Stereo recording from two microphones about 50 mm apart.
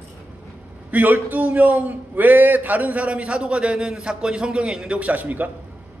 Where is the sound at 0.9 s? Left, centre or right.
Right.